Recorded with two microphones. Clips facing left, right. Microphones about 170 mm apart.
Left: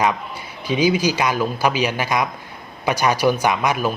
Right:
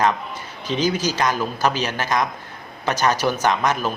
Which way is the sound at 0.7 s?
10° left (ahead or behind).